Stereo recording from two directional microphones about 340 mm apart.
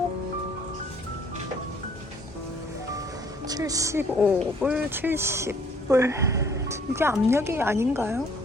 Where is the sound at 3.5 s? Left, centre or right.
Centre.